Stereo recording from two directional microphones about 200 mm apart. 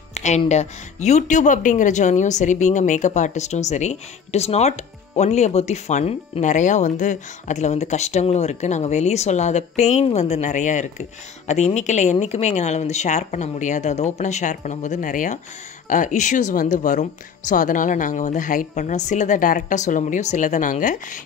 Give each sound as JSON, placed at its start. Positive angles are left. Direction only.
{"t": 0.1, "sound": "speech", "side_deg": 35}